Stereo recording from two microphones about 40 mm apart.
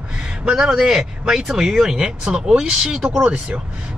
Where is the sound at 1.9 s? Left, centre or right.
Centre.